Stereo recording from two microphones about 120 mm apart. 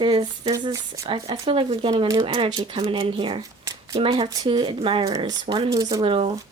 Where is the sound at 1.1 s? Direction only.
45° right (ahead or behind).